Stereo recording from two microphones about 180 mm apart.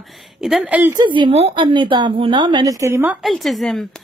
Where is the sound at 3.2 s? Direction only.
Centre (ahead or behind).